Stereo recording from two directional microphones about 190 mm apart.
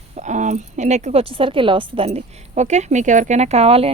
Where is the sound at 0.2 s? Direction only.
40° right (ahead or behind).